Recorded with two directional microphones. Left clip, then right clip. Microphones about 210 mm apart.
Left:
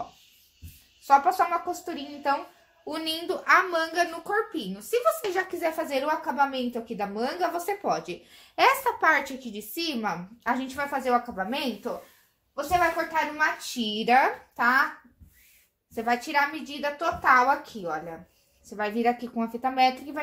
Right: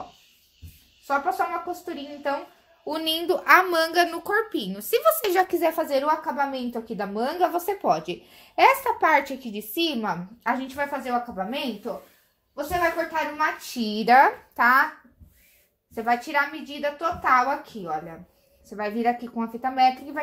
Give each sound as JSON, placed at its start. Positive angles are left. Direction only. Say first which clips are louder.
{"t": 1.0, "sound": "a woman's voice", "louder": "left 4 dB", "side_deg": -5}
{"t": 2.8, "sound": "a child's voice", "louder": "right 5 dB", "side_deg": -30}
{"t": 3.4, "sound": "speech", "louder": "right 3 dB", "side_deg": -50}
{"t": 5.8, "sound": "a woman's voice", "louder": "right 4 dB", "side_deg": -25}
{"t": 13.1, "sound": "a child's voice", "louder": "even", "side_deg": -30}
{"t": 15.9, "sound": "a woman's voice", "louder": "right 2 dB", "side_deg": -15}